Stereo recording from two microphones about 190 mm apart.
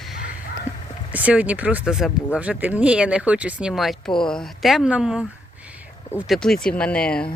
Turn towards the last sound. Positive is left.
turn(degrees=5)  # may be behind; listen again after turning